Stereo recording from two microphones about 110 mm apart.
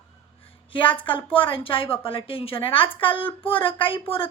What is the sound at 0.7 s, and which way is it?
A woman's voice, 50° left (ahead or behind).